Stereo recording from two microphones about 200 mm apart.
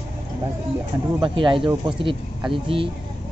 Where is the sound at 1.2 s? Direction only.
25° right (ahead or behind).